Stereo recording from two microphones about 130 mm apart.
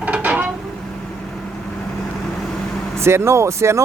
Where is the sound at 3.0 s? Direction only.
20° right (ahead or behind).